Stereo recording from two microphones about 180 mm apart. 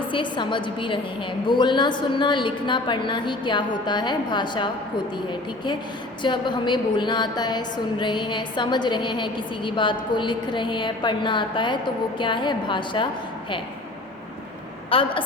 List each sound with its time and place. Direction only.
0.1 s a woman's voice: 25° left (ahead or behind)
6.2 s a woman's voice: 25° left (ahead or behind)
14.8 s a woman's voice: 30° left (ahead or behind)